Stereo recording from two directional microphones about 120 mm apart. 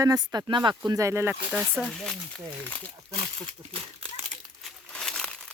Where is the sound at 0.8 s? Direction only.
25° right (ahead or behind); by 1.9 s 10° right (ahead or behind).